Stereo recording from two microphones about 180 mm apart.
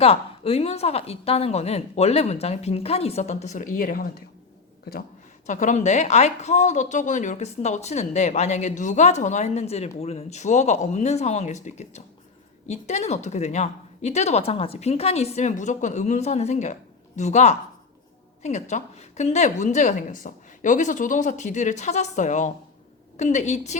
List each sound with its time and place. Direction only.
0.0 s speech: 35° left (ahead or behind); by 4.1 s 55° left (ahead or behind)
5.5 s speech: 45° left (ahead or behind)